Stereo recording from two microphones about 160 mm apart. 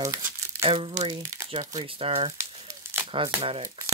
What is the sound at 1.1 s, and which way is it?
Speech, 20° right (ahead or behind).